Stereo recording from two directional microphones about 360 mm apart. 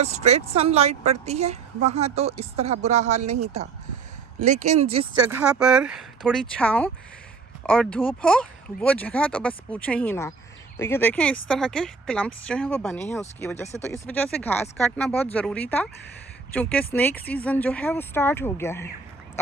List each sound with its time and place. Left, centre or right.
0.0 s a woman's voice: centre
4.4 s a woman's voice: centre
5.3 s speech: centre